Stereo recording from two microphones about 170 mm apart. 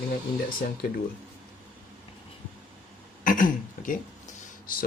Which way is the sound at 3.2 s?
50° left (ahead or behind).